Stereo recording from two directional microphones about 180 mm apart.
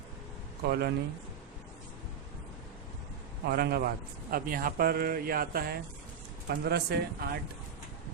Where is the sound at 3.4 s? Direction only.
60° right (ahead or behind).